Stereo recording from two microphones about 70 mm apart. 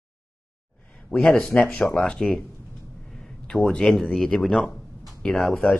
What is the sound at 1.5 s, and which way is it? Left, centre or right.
Speech, centre.